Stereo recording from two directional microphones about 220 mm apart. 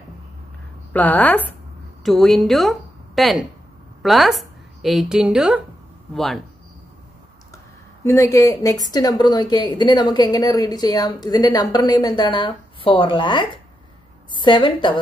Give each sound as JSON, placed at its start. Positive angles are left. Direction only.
{"t": 0.9, "sound": "a woman's voice", "side_deg": 5}
{"t": 8.0, "sound": "a woman's voice", "side_deg": 10}